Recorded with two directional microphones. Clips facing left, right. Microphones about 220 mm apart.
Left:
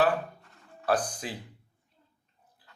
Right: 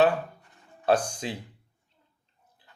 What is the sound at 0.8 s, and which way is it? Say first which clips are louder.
Speech: right 4 dB; 25° right (ahead or behind).